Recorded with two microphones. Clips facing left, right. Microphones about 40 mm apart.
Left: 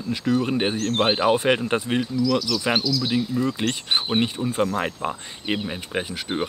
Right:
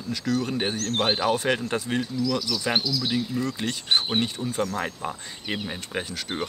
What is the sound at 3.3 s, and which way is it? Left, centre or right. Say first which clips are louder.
Speech: left 4 dB; left.